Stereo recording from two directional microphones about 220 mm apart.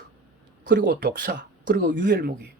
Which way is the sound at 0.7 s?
40° right (ahead or behind).